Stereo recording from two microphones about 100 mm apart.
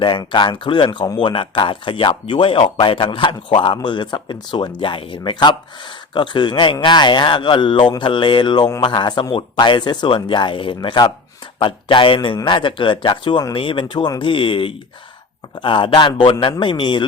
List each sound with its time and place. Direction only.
0.0 s speech: 55° left (ahead or behind)
0.9 s speech: 40° left (ahead or behind)
1.2 s speech: 55° left (ahead or behind)
10.8 s speech: 45° left (ahead or behind)
11.6 s speech: 55° left (ahead or behind)